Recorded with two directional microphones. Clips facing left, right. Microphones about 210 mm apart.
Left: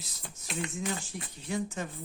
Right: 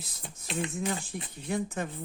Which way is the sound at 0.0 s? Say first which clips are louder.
Right 2 dB; 55° right (ahead or behind).